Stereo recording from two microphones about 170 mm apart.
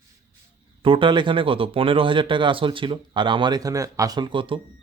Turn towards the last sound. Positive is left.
turn(degrees=-30)  # may be behind; listen again after turning